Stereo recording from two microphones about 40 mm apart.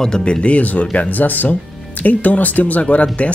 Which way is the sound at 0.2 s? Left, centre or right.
Left.